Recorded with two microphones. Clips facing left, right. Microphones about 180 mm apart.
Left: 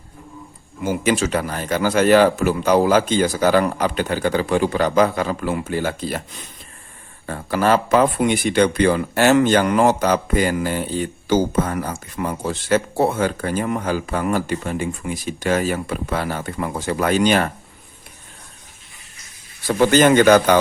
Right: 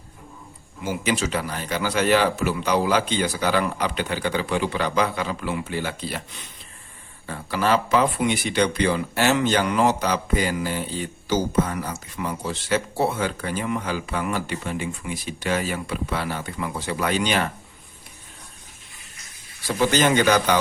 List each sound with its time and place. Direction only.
0.9 s speech: 50° left (ahead or behind)
7.3 s speech: 50° left (ahead or behind)
19.6 s speech: 55° left (ahead or behind)